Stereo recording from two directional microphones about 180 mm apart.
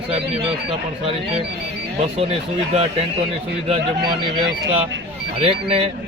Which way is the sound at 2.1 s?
35° right (ahead or behind).